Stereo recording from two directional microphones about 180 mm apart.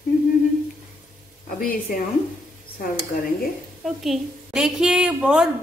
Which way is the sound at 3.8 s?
Centre (ahead or behind).